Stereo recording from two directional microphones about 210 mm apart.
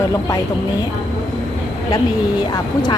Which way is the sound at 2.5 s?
20° left (ahead or behind).